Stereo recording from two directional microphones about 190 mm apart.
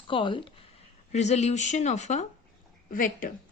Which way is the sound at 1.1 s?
35° left (ahead or behind).